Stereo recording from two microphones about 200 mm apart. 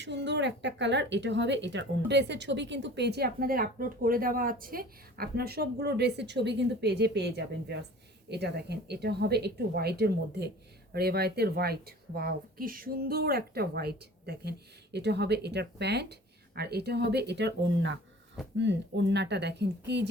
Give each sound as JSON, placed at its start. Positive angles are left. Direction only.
{"t": 0.0, "sound": "a woman's voice", "side_deg": -60}